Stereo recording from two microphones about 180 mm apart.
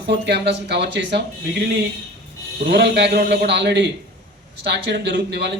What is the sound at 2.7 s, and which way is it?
Speech, 70° right (ahead or behind).